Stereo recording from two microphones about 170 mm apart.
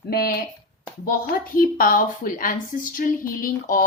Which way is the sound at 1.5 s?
55° left (ahead or behind).